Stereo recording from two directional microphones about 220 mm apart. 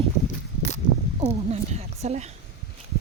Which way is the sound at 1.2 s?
25° right (ahead or behind).